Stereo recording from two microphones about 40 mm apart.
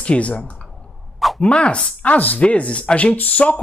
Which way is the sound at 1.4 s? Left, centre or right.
Left.